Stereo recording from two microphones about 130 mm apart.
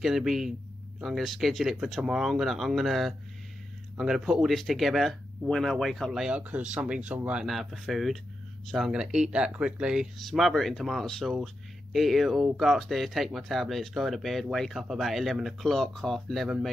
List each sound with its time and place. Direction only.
0.0 s speech: 5° right (ahead or behind)